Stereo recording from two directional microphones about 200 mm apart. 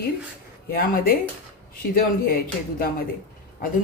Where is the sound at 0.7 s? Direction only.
45° left (ahead or behind).